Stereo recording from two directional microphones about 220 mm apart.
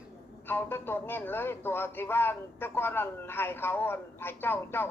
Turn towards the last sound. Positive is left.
turn(degrees=10)  # may be behind; listen again after turning